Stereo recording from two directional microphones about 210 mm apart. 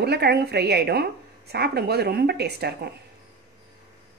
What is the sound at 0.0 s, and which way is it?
A woman's voice, 50° right (ahead or behind).